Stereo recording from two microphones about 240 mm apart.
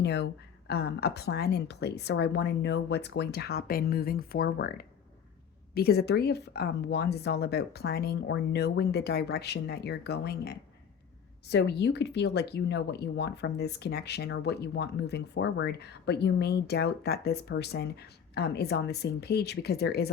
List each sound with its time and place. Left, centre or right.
0.0 s speech: left